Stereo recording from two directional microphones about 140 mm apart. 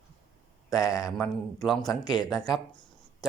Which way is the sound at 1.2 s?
Centre (ahead or behind).